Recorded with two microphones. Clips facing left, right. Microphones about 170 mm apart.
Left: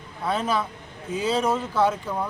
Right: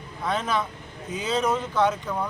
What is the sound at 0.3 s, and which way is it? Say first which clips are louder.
Speech: left 1 dB; 5° left (ahead or behind).